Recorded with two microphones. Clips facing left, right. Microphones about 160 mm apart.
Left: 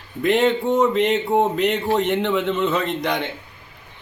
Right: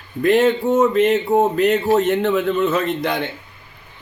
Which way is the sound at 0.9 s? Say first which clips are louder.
Right 3 dB; 20° left (ahead or behind).